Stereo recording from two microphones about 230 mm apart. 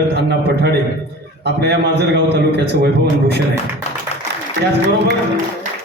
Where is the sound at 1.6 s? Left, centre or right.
Right.